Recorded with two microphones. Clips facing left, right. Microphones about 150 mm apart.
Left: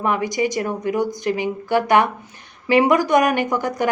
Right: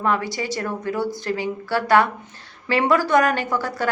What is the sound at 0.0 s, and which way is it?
A woman's voice, 15° left (ahead or behind).